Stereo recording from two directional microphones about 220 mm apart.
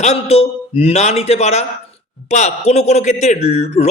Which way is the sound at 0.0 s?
30° left (ahead or behind).